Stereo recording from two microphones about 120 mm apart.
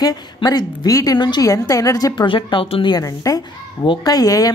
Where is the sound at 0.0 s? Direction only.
30° left (ahead or behind).